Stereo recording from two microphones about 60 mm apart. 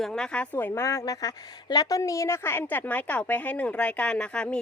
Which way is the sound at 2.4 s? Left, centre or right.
Left.